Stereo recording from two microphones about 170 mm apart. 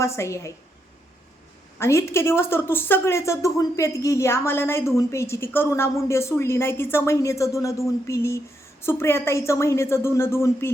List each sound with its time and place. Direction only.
0.0 s a woman's voice: 15° left (ahead or behind)
1.8 s a woman's voice: 15° left (ahead or behind)